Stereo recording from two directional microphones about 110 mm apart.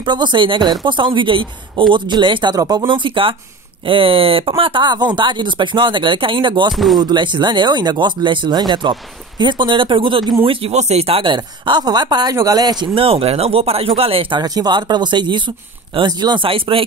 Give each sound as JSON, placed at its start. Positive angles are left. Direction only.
{"t": 0.0, "sound": "speech", "side_deg": -45}
{"t": 2.9, "sound": "speech", "side_deg": -50}
{"t": 10.7, "sound": "speech", "side_deg": -85}
{"t": 12.9, "sound": "speech", "side_deg": -55}
{"t": 14.4, "sound": "speech", "side_deg": -40}